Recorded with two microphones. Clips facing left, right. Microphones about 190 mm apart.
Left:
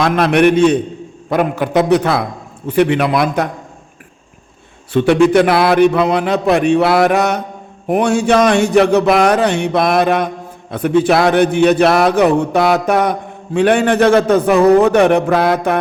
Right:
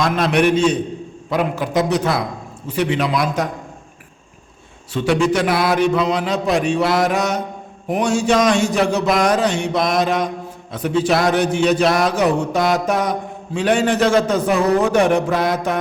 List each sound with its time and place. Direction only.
0.0 s a man's voice: 60° left (ahead or behind)
4.9 s a man's voice: 60° left (ahead or behind)